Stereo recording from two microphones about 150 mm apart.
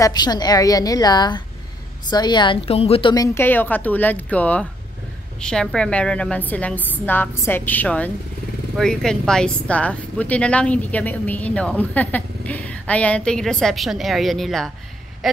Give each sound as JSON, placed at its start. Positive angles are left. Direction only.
{"t": 0.0, "sound": "a woman's voice", "side_deg": 30}
{"t": 3.3, "sound": "speech", "side_deg": 15}